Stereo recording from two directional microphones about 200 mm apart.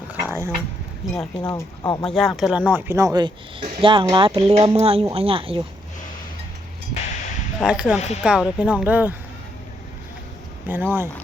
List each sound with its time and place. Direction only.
0.1 s a sound: 10° right (ahead or behind)
1.0 s speech: centre (ahead or behind)
1.4 s speech: 20° left (ahead or behind)
2.0 s speech: centre (ahead or behind); by 5.6 s 25° right (ahead or behind)
7.6 s speech: 5° right (ahead or behind)
7.9 s speech: 35° left (ahead or behind)
8.2 s speech: 5° right (ahead or behind)
10.7 s speech: 10° right (ahead or behind)